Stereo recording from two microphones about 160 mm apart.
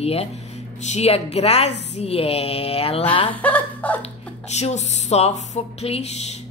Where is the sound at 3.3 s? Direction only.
10° left (ahead or behind).